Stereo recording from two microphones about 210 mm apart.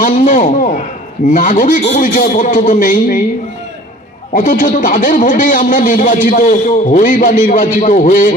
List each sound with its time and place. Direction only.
0.0 s a sound: 40° left (ahead or behind)
1.3 s speech: 40° left (ahead or behind)
4.4 s speech: 40° left (ahead or behind)